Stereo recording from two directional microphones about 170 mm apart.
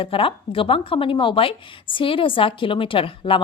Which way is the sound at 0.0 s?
30° left (ahead or behind).